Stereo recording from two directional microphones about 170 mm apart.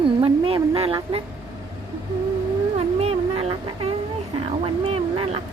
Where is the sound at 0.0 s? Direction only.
30° right (ahead or behind).